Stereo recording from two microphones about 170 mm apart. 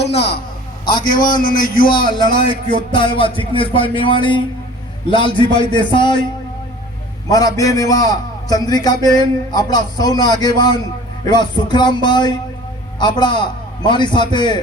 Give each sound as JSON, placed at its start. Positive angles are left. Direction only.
{"t": 1.0, "sound": "speech", "side_deg": 55}
{"t": 1.9, "sound": "a man's voice", "side_deg": 25}
{"t": 7.3, "sound": "a man's voice", "side_deg": 20}